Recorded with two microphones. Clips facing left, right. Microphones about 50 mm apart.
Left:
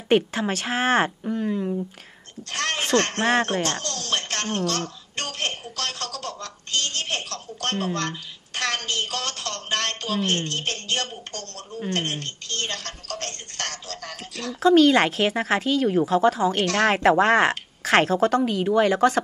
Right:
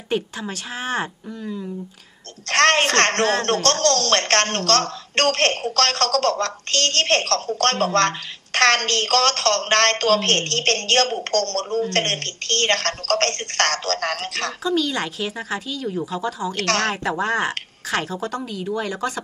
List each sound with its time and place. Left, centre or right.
0.1 s speech: left
1.3 s speech: left
2.5 s a woman's voice: right
14.6 s speech: left
16.5 s a woman's voice: right
16.9 s speech: left